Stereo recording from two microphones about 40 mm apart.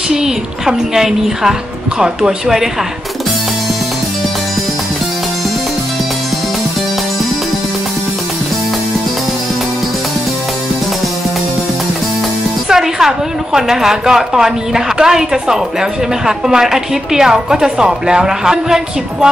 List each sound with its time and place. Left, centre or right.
0.1 s a woman's voice: centre
12.6 s a woman's voice: centre